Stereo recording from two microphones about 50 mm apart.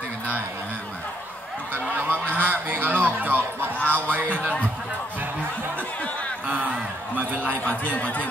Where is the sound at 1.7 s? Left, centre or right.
Right.